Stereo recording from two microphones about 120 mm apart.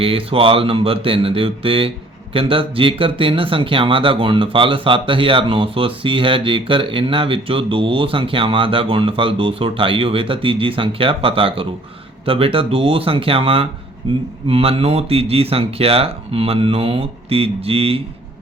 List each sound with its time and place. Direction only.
0.0 s speech: 50° right (ahead or behind)